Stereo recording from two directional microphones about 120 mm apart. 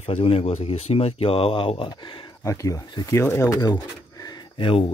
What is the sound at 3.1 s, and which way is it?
Speech, 25° left (ahead or behind).